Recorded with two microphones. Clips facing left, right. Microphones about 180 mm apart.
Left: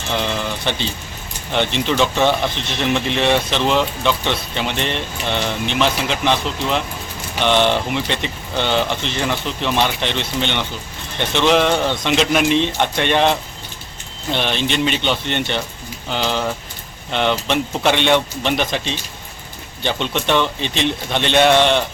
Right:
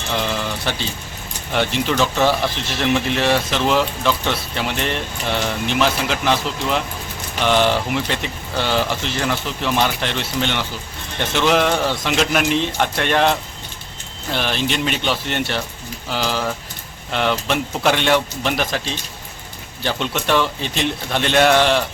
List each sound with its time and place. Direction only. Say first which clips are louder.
1.5 s speech: left 1 dB; 5° right (ahead or behind)
19.8 s speech: left 1 dB; 5° right (ahead or behind)